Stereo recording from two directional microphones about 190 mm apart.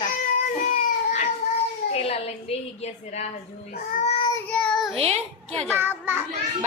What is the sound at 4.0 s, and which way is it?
Child singing, 35° left (ahead or behind).